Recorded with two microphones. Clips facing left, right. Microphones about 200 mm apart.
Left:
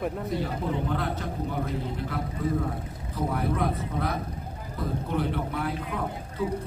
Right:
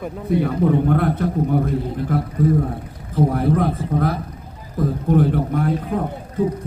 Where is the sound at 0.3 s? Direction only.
55° right (ahead or behind).